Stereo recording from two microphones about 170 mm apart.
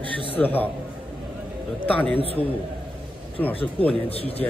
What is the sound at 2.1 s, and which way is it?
Speech, 35° right (ahead or behind).